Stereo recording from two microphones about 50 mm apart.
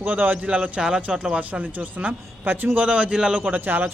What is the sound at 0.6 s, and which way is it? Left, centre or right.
Speech, centre.